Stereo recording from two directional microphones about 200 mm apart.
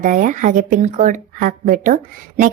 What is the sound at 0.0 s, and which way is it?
Speech, 40° right (ahead or behind).